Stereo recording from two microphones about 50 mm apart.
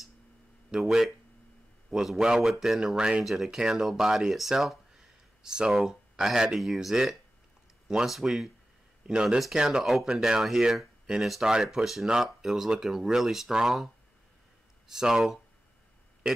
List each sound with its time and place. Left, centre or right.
0.7 s speech: centre
2.8 s speech: centre
3.3 s speech: centre
3.5 s speech: centre
5.7 s speech: centre
6.1 s speech: centre
14.9 s speech: centre